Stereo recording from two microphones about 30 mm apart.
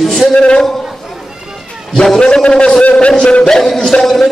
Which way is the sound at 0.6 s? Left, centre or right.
Centre.